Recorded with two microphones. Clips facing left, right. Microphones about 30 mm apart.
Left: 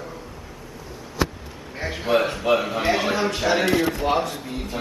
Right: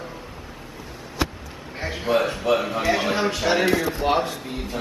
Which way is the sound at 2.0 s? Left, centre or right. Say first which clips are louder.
Left 1 dB; centre.